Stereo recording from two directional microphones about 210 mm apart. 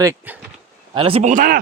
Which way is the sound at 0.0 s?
15° right (ahead or behind).